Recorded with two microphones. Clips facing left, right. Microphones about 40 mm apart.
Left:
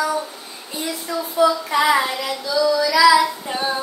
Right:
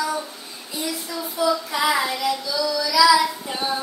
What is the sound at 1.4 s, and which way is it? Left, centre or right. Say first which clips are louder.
Child singing: left 4 dB; left.